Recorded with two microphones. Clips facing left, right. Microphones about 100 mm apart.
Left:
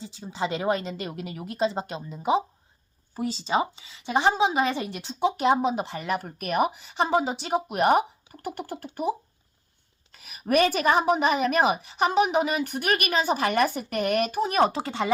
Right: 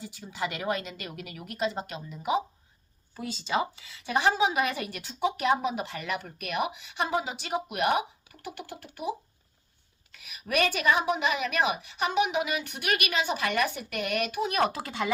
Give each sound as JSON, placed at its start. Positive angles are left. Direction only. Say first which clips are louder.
{"t": 0.0, "sound": "speech", "louder": "left 4 dB", "side_deg": 25}